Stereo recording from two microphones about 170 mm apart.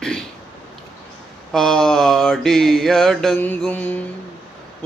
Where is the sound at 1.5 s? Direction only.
5° left (ahead or behind).